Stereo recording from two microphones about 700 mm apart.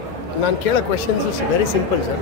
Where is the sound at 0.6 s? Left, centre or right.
Left.